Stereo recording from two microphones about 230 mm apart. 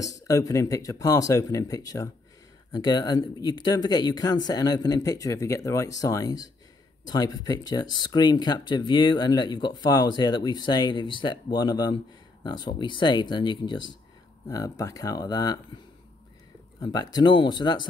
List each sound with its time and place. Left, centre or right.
0.0 s speech: centre
16.8 s speech: centre